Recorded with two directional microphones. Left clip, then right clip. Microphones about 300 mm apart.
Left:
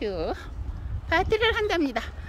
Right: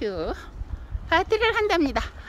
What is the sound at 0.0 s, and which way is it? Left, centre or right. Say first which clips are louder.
A woman's voice: right 1 dB; centre.